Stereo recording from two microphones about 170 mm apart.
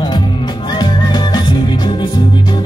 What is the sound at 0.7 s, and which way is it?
Music, 25° left (ahead or behind).